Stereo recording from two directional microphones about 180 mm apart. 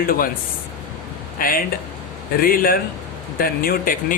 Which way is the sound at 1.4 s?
55° left (ahead or behind).